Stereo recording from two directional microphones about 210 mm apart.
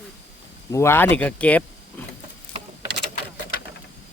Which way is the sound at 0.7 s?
10° left (ahead or behind).